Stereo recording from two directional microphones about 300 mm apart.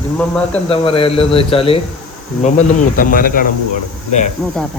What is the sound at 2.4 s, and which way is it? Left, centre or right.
Cricket, left.